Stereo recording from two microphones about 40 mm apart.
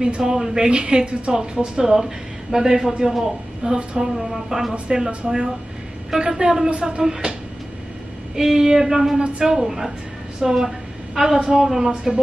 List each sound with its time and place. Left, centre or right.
0.2 s speech: centre
3.7 s speech: right
4.2 s speech: centre
5.2 s speech: right
6.3 s speech: centre
8.4 s speech: centre
9.2 s speech: right
11.9 s speech: right